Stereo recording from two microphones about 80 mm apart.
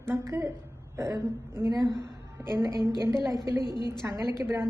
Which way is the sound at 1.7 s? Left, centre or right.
Right.